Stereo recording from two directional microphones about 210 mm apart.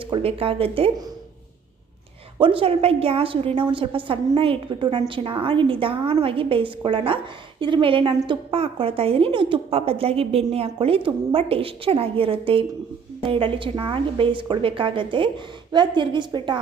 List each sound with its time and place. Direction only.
0.0 s a woman's voice: 25° right (ahead or behind)
2.4 s a woman's voice: 25° right (ahead or behind)